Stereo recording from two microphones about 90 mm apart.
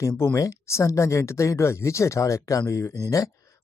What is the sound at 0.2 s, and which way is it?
Speech, 35° left (ahead or behind).